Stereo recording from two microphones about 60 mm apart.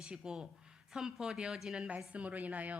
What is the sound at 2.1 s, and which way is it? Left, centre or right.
Speech, right.